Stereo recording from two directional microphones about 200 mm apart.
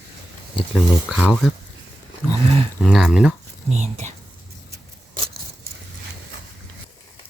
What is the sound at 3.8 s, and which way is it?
Speech, 35° right (ahead or behind).